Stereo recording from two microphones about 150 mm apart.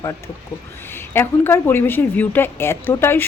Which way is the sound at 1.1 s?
15° left (ahead or behind).